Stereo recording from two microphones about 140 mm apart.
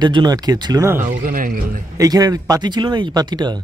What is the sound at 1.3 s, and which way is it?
Speech, 80° right.